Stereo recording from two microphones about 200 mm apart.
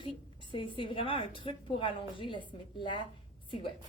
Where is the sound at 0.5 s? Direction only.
25° left (ahead or behind).